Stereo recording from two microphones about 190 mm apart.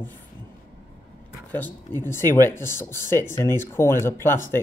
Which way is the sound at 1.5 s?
10° left (ahead or behind).